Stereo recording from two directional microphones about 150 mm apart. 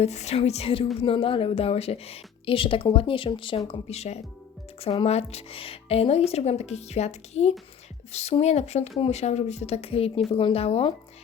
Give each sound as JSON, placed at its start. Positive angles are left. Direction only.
{"t": 0.0, "sound": "a woman's voice", "side_deg": 45}
{"t": 3.7, "sound": "a woman's voice", "side_deg": 45}